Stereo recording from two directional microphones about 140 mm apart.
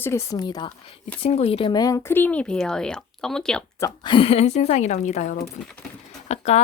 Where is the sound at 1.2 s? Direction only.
45° left (ahead or behind).